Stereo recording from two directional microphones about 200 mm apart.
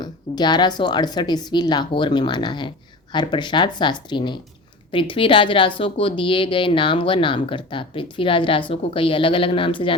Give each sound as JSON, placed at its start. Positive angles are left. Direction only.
{"t": 0.0, "sound": "speech", "side_deg": 20}